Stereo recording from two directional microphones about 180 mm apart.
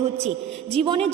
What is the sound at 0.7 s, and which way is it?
Speech, 30° right (ahead or behind).